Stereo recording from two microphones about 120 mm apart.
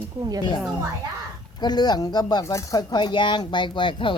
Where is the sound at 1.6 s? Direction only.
35° left (ahead or behind).